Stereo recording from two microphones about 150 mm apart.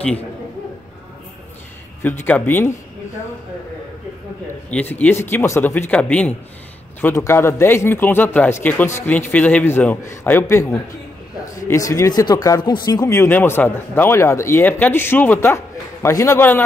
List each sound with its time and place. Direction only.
2.0 s speech: 10° left (ahead or behind)
4.6 s speech: 10° left (ahead or behind)